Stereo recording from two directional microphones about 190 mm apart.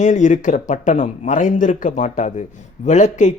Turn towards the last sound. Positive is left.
turn(degrees=40)  # may be behind; listen again after turning